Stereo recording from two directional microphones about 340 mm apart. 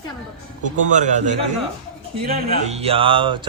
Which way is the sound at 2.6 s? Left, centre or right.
Centre.